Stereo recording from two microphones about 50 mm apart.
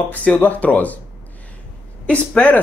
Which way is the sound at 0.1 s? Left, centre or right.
Left.